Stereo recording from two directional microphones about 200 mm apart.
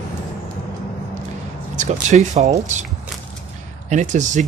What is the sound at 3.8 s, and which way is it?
Speech, 35° right (ahead or behind).